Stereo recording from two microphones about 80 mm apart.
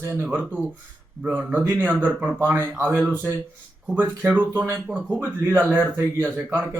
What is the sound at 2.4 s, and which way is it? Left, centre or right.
Speech, right.